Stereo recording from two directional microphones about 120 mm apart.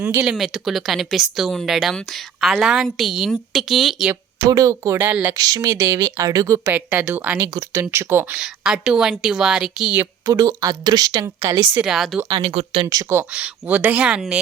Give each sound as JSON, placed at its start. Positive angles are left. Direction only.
{"t": 0.3, "sound": "a woman's voice", "side_deg": -5}
{"t": 4.4, "sound": "a woman's voice", "side_deg": -30}
{"t": 4.9, "sound": "speech", "side_deg": -15}
{"t": 5.3, "sound": "speech", "side_deg": -30}
{"t": 6.7, "sound": "speech", "side_deg": -15}
{"t": 7.4, "sound": "speech", "side_deg": -30}
{"t": 8.4, "sound": "a woman's voice", "side_deg": -5}
{"t": 10.2, "sound": "a woman's voice", "side_deg": -30}
{"t": 11.8, "sound": "a woman's voice", "side_deg": -5}
{"t": 12.3, "sound": "speech", "side_deg": -50}
{"t": 12.9, "sound": "speech", "side_deg": -25}
{"t": 13.3, "sound": "speech", "side_deg": -10}